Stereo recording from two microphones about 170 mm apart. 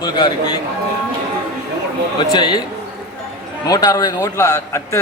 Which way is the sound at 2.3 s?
25° left (ahead or behind).